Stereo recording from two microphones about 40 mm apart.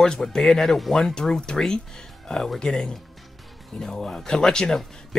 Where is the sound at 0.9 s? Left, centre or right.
Centre.